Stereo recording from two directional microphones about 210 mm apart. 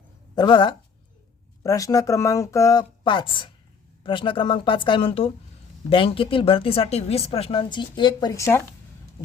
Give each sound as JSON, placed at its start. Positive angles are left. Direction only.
{"t": 0.3, "sound": "speech", "side_deg": 20}